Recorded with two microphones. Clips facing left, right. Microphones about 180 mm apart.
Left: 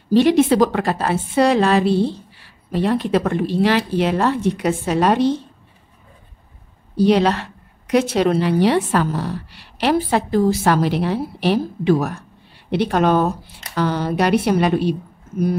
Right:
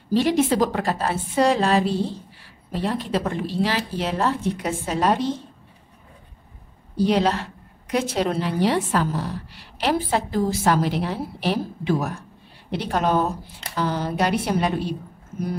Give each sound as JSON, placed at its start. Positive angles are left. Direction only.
{"t": 0.1, "sound": "a woman's voice", "side_deg": 70}
{"t": 7.0, "sound": "a woman's voice", "side_deg": 70}